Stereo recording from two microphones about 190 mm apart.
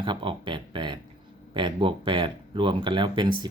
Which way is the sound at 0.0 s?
25° right (ahead or behind).